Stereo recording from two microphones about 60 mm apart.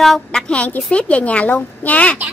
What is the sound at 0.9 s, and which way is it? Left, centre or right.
Speech, centre.